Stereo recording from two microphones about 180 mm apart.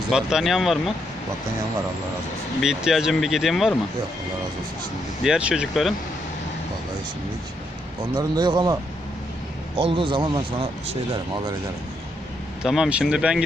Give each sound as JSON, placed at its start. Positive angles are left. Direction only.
{"t": 0.1, "sound": "speech", "side_deg": -5}
{"t": 2.6, "sound": "speech", "side_deg": 0}
{"t": 5.2, "sound": "speech", "side_deg": -5}
{"t": 8.1, "sound": "speech", "side_deg": -25}
{"t": 12.6, "sound": "speech", "side_deg": -5}